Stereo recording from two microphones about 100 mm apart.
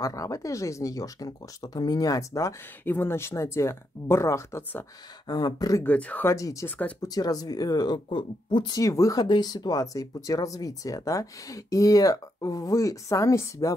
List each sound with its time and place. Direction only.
0.0 s speech: 35° left (ahead or behind)
2.8 s speech: 20° left (ahead or behind)
5.3 s speech: 40° left (ahead or behind)
5.9 s speech: 15° left (ahead or behind)
6.2 s speech: 35° left (ahead or behind)
8.1 s speech: 55° left (ahead or behind)
8.7 s speech: 35° left (ahead or behind)